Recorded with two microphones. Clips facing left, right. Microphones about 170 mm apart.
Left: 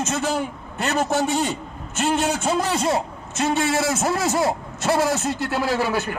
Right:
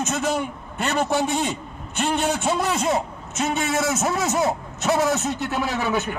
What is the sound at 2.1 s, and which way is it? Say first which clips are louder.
A man's voice: even; centre (ahead or behind).